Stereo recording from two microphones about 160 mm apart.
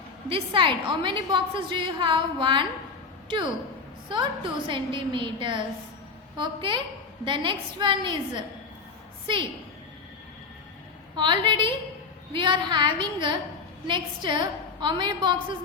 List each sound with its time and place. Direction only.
0.3 s a woman's voice: 35° right (ahead or behind)
4.1 s a woman's voice: 30° right (ahead or behind)
11.1 s a woman's voice: 30° right (ahead or behind)